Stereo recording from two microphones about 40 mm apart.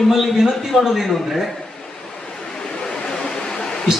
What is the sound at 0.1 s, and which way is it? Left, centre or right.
A man's voice, centre.